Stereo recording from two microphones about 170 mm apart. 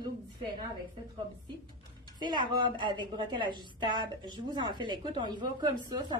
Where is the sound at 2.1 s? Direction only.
25° right (ahead or behind).